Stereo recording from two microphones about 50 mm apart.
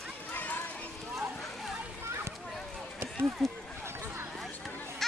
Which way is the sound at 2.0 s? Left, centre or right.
Right.